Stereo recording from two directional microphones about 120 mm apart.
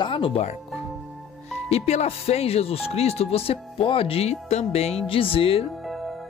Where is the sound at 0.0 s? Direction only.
45° left (ahead or behind).